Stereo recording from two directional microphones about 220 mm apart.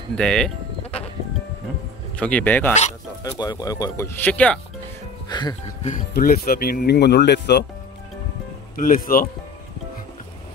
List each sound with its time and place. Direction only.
0.1 s speech: 5° left (ahead or behind)
2.1 s speech: 5° left (ahead or behind)
3.3 s speech: 20° left (ahead or behind)
5.3 s speech: 20° left (ahead or behind)
5.9 s speech: 40° left (ahead or behind)
8.7 s speech: 40° left (ahead or behind)